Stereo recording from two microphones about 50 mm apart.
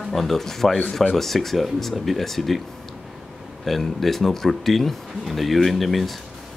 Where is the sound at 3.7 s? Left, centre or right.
Centre.